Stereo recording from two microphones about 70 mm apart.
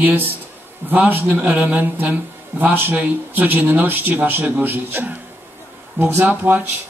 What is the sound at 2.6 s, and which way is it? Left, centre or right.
Speech, right.